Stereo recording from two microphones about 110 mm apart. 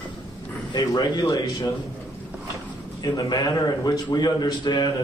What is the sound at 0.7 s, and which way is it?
Speech, 35° left (ahead or behind).